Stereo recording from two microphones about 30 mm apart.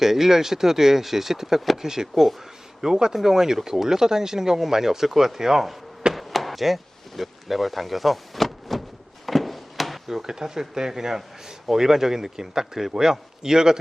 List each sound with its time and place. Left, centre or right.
0.0 s a man's voice: centre
6.1 s chop: centre
7.2 s speech: centre
9.2 s a sound: centre
10.1 s a man's voice: centre